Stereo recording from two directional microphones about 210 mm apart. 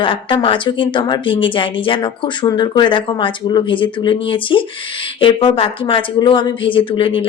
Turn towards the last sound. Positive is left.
turn(degrees=25)  # may be behind; listen again after turning